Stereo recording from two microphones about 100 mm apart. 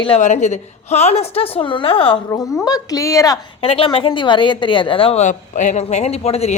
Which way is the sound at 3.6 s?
70° left (ahead or behind).